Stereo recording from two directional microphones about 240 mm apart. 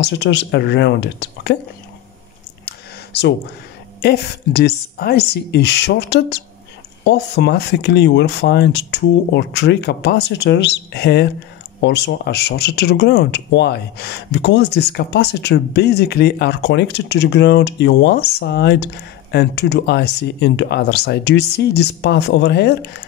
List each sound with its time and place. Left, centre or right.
0.0 s speech: left
2.6 s a sound: left
4.0 s speech: left